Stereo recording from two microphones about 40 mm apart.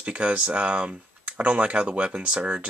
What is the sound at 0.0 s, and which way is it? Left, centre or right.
Speech, right.